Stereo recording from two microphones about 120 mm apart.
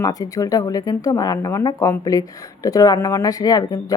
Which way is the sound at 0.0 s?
30° left (ahead or behind).